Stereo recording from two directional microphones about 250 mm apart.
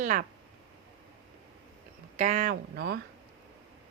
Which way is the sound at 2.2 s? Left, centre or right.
Right.